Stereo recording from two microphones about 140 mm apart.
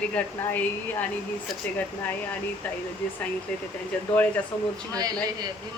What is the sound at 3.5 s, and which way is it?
A woman's voice, 10° left (ahead or behind).